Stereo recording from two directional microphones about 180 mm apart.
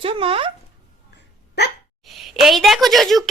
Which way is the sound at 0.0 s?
30° right (ahead or behind).